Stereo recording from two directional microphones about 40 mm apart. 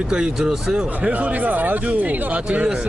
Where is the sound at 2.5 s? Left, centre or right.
Right.